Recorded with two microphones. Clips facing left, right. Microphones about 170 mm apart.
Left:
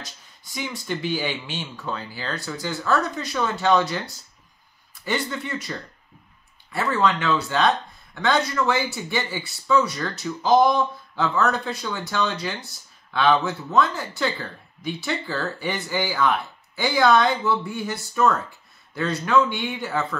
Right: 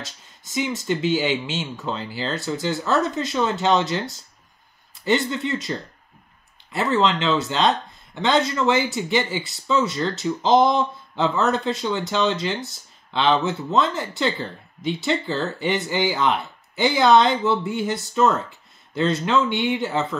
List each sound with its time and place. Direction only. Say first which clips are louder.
0.0 s speech: right 3 dB; 25° right (ahead or behind)
5.3 s speech: right 5 dB; 20° right (ahead or behind)